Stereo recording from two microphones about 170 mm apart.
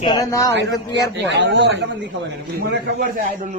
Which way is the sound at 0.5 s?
90° right.